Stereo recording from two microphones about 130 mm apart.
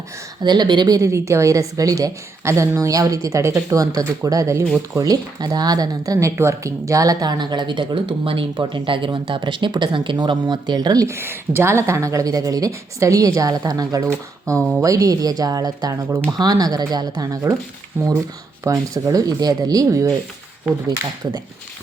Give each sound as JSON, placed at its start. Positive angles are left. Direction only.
{"t": 0.4, "sound": "a woman's voice", "side_deg": -35}
{"t": 18.0, "sound": "a woman's voice", "side_deg": -15}